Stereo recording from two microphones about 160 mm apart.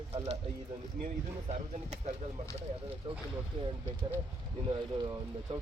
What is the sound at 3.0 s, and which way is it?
Speech, 35° right (ahead or behind).